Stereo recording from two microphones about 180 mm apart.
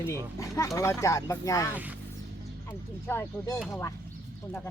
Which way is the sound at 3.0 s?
15° left (ahead or behind).